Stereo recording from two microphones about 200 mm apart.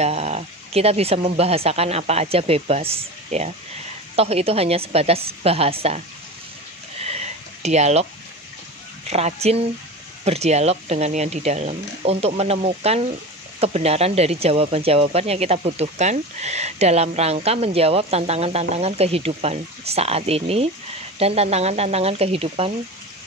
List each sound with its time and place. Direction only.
0.0 s a woman's voice: 30° right (ahead or behind)
7.0 s a sound: 35° right (ahead or behind)
9.1 s speech: 30° right (ahead or behind)